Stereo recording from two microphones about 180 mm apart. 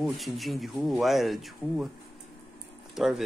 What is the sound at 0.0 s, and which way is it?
Speech, centre (ahead or behind).